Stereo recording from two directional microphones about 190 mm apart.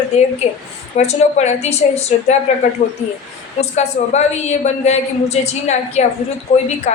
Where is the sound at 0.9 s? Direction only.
35° left (ahead or behind).